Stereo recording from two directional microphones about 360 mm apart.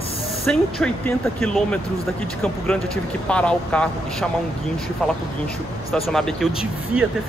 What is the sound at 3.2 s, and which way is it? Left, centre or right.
Speech, centre.